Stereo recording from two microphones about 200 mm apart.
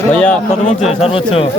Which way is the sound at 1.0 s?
30° left (ahead or behind).